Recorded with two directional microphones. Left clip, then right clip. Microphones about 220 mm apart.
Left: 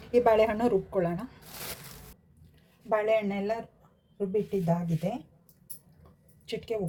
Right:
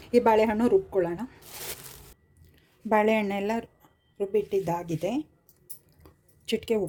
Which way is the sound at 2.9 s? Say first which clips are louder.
Right 3 dB; 45° right (ahead or behind).